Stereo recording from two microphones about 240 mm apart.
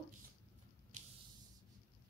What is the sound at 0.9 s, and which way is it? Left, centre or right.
Spray, right.